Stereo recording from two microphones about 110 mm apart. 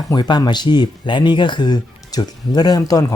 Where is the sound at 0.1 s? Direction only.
40° left (ahead or behind).